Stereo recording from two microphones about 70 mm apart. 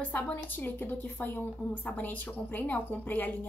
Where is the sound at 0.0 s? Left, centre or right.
Left.